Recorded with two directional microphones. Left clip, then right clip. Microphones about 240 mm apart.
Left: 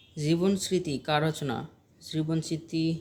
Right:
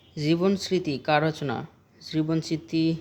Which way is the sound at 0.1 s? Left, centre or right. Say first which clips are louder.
Right 3 dB; right.